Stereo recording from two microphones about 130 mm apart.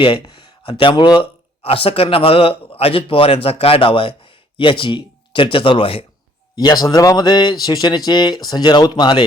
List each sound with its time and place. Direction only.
0.0 s speech: 40° left (ahead or behind)
1.6 s speech: 45° left (ahead or behind)
6.6 s a man's voice: 30° left (ahead or behind)